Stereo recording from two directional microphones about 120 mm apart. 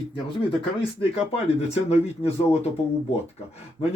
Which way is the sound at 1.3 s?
55° left (ahead or behind).